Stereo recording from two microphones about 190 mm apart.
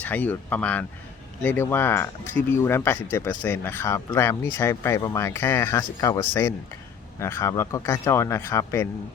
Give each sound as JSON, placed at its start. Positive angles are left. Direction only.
{"t": 0.0, "sound": "speech", "side_deg": 10}